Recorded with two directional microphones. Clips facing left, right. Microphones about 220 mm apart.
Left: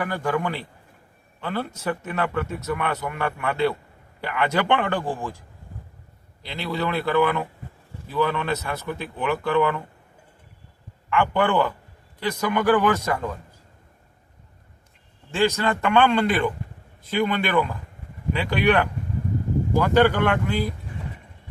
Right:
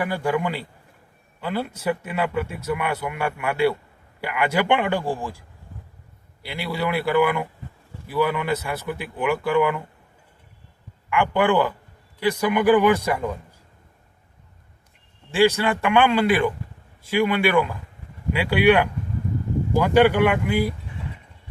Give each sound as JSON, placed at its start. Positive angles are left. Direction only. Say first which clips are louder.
{"t": 0.0, "sound": "speech", "louder": "right 2 dB", "side_deg": -10}
{"t": 6.5, "sound": "speech", "louder": "right 1 dB", "side_deg": -10}
{"t": 11.1, "sound": "speech", "louder": "right 2 dB", "side_deg": -10}
{"t": 15.3, "sound": "speech", "louder": "right 3 dB", "side_deg": -10}